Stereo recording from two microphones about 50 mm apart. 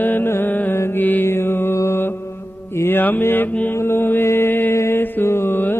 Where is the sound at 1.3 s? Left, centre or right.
Left.